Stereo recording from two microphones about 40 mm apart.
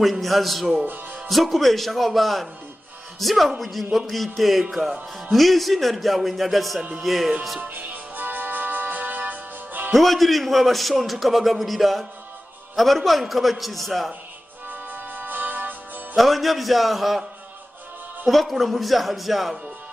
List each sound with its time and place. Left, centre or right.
0.0 s a man's voice: centre
7.6 s music: right
9.9 s a man's voice: centre
14.7 s music: right
16.2 s a man's voice: centre
18.3 s a man's voice: centre